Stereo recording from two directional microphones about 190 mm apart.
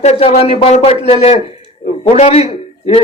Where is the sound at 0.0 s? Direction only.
35° left (ahead or behind).